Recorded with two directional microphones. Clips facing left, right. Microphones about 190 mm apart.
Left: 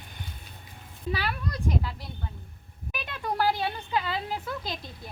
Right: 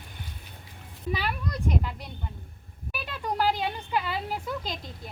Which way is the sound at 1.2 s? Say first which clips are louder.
Right 1 dB; 10° right (ahead or behind).